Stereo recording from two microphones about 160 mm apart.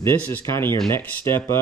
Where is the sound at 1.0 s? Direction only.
15° left (ahead or behind).